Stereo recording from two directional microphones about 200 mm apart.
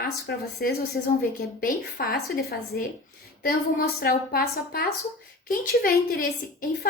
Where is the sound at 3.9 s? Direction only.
50° left (ahead or behind).